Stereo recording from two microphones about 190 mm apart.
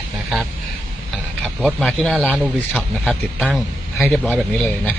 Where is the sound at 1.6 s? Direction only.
Centre (ahead or behind).